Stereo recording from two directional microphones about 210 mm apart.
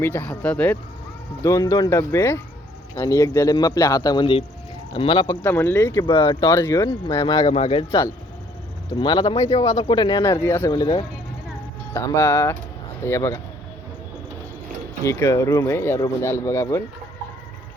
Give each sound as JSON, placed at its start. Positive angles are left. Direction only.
{"t": 0.0, "sound": "speech", "side_deg": 10}
{"t": 5.4, "sound": "speech", "side_deg": 10}
{"t": 7.5, "sound": "speech", "side_deg": 30}
{"t": 15.0, "sound": "speech", "side_deg": 15}